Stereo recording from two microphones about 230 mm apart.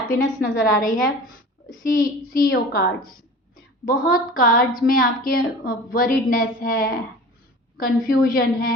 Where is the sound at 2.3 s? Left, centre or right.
Left.